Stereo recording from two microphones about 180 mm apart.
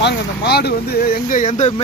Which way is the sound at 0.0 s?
65° left (ahead or behind).